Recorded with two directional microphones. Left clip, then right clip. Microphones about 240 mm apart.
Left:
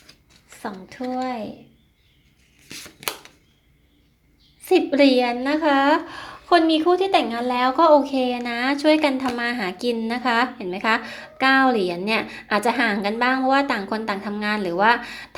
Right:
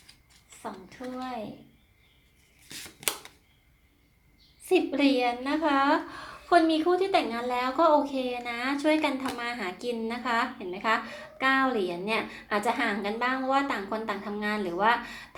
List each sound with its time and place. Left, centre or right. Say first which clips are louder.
0.6 s a woman's voice: left 8 dB; left
2.6 s a sound: left 3 dB; centre
4.6 s a woman's voice: left 8 dB; left